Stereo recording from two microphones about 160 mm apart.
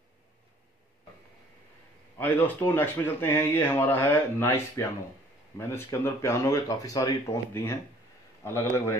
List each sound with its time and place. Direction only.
2.1 s speech: 10° left (ahead or behind)